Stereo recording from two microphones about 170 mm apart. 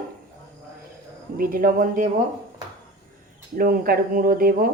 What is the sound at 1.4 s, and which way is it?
Speech, 55° right (ahead or behind).